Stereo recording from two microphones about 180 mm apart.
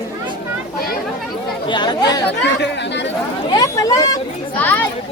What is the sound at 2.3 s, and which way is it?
Speech, 70° left (ahead or behind).